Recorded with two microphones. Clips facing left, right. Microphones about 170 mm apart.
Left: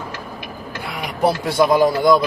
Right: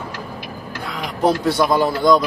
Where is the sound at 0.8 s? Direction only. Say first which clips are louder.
Right 1 dB; 10° left (ahead or behind).